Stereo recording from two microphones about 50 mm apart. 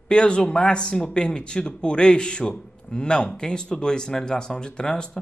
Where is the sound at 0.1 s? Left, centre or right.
Centre.